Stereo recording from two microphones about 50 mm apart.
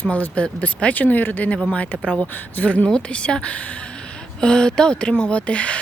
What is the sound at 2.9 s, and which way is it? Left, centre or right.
Speech, centre.